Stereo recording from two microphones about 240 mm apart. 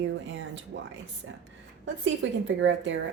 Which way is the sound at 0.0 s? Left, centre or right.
Right.